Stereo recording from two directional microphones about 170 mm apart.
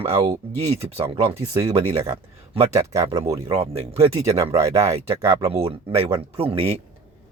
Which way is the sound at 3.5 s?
35° right (ahead or behind).